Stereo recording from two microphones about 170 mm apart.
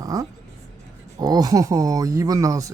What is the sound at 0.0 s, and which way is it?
Music, 20° right (ahead or behind).